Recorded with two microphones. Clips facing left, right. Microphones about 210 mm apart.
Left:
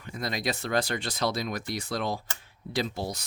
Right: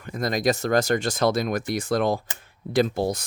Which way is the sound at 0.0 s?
45° right (ahead or behind).